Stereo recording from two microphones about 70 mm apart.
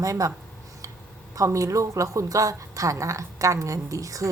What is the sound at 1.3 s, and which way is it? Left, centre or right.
A woman's voice, right.